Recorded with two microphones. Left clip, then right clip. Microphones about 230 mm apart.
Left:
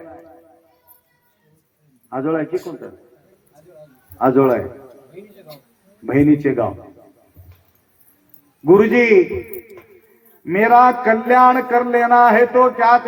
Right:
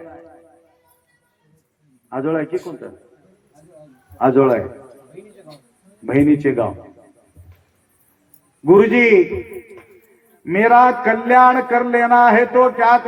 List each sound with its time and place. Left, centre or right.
0.0 s music: right
2.0 s a man's voice: right
4.2 s a man's voice: right
6.1 s a man's voice: right
8.6 s a man's voice: right
10.4 s a man's voice: right